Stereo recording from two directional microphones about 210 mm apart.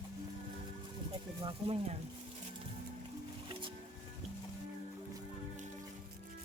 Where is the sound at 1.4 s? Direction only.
25° right (ahead or behind).